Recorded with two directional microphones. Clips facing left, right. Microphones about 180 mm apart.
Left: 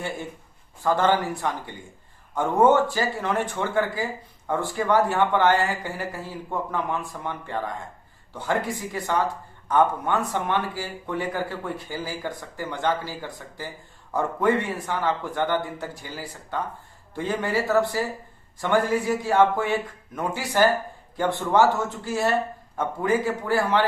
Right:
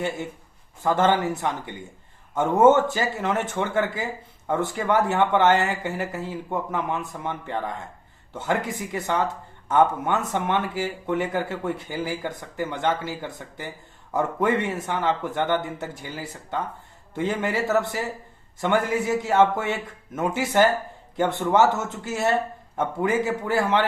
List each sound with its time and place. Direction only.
0.8 s speech: 20° right (ahead or behind)